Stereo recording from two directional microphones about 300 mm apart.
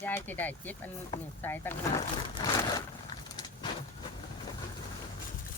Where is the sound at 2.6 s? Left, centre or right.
Centre.